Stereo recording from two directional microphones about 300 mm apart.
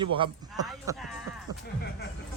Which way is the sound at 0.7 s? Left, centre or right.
Centre.